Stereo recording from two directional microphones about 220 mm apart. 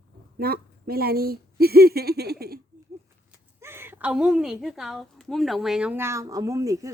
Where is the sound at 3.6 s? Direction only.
10° right (ahead or behind).